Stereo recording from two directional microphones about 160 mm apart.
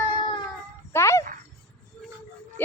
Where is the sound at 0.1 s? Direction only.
30° left (ahead or behind).